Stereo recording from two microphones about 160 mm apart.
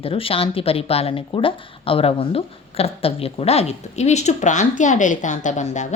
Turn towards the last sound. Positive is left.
turn(degrees=50)  # may be behind; listen again after turning